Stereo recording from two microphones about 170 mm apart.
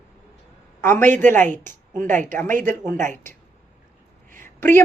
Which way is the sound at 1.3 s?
50° right (ahead or behind).